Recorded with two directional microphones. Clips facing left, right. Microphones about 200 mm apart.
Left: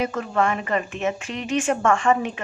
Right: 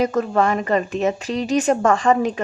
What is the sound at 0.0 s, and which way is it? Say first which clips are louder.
A woman's voice: right 4 dB; 40° right (ahead or behind).